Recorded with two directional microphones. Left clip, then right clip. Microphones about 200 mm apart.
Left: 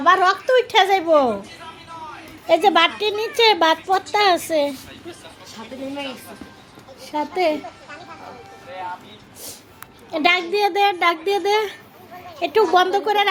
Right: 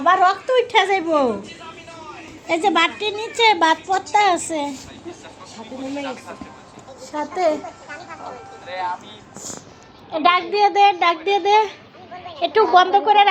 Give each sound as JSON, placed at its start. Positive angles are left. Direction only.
{"t": 0.0, "sound": "a child's voice", "side_deg": 25}
{"t": 2.5, "sound": "a child's voice", "side_deg": 25}
{"t": 7.1, "sound": "a child's voice", "side_deg": 25}
{"t": 10.1, "sound": "a child's voice", "side_deg": 30}